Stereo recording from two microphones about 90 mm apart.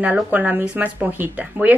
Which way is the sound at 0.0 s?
20° right (ahead or behind).